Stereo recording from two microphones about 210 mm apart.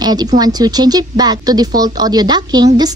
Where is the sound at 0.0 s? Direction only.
20° right (ahead or behind).